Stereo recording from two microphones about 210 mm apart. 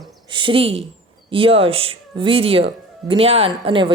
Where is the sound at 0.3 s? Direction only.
25° right (ahead or behind).